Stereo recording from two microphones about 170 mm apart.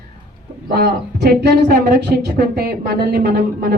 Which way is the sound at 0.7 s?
65° right (ahead or behind).